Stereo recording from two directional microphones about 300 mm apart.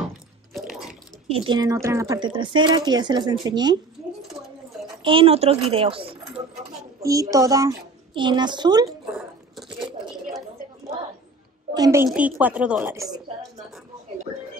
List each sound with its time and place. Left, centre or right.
0.5 s water: centre
1.3 s a woman's voice: centre
5.0 s a woman's voice: centre
11.7 s a woman's voice: centre